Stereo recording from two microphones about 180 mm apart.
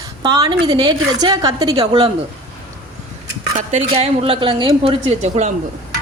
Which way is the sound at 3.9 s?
30° right (ahead or behind).